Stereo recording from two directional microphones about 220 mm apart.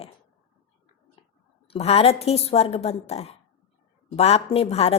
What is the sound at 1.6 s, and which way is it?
A woman's voice, 30° left (ahead or behind).